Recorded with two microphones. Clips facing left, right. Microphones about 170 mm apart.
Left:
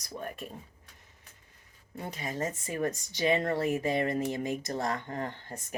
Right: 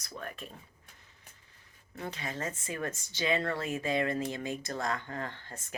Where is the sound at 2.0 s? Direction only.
15° left (ahead or behind).